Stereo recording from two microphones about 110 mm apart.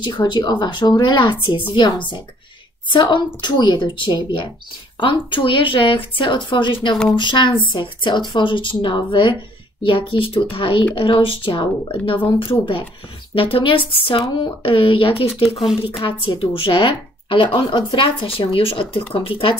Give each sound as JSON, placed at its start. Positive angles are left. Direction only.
{"t": 0.0, "sound": "speech", "side_deg": 45}
{"t": 13.3, "sound": "speech", "side_deg": 55}
{"t": 15.4, "sound": "a woman's voice", "side_deg": 0}
{"t": 16.0, "sound": "speech", "side_deg": 50}